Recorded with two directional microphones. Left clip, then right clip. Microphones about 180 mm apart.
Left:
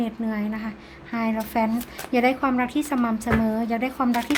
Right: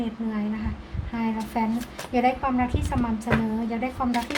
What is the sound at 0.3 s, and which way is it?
Speech, 50° left (ahead or behind).